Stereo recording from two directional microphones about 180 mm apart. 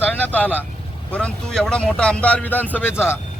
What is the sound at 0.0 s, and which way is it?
Vehicle, 10° left (ahead or behind).